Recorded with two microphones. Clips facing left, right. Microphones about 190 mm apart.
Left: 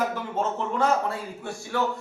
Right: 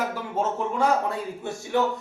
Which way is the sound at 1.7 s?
20° right (ahead or behind).